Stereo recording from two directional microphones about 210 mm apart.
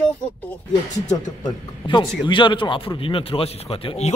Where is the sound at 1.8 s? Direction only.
20° left (ahead or behind).